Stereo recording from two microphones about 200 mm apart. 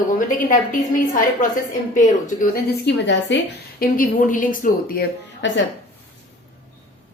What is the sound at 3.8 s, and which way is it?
Speech, 45° left (ahead or behind).